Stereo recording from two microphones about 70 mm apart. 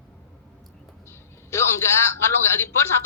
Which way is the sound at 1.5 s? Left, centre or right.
Left.